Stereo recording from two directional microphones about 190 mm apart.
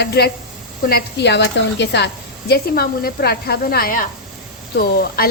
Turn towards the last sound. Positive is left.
turn(degrees=55)  # may be behind; listen again after turning